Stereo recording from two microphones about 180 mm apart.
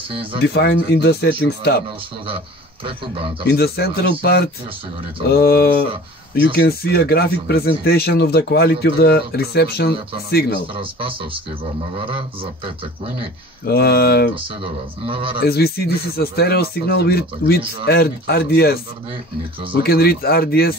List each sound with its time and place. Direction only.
0.1 s speech: 30° right (ahead or behind)
0.4 s speech: 65° left (ahead or behind)
2.2 s a man's voice: 30° right (ahead or behind)
3.4 s speech: 60° left (ahead or behind)
10.7 s speech: 30° right (ahead or behind)
12.6 s speech: 30° right (ahead or behind)
13.7 s speech: 60° left (ahead or behind)
14.3 s speech: 30° right (ahead or behind)
15.4 s speech: 60° left (ahead or behind)
19.8 s speech: 60° left (ahead or behind)